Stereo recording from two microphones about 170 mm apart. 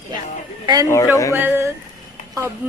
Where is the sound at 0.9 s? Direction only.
15° left (ahead or behind).